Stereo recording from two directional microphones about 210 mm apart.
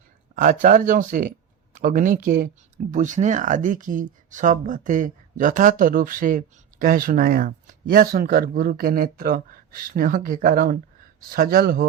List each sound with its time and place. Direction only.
0.6 s speech: 40° right (ahead or behind)